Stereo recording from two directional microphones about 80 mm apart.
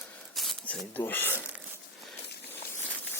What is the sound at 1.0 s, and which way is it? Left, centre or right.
Speech, left.